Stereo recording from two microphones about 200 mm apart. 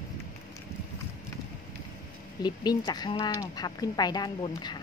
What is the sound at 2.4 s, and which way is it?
Speech, 20° left (ahead or behind).